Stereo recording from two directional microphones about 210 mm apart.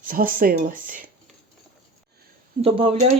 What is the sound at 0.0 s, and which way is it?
Speech, 40° right (ahead or behind).